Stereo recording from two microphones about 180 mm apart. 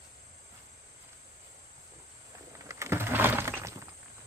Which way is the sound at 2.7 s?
15° right (ahead or behind).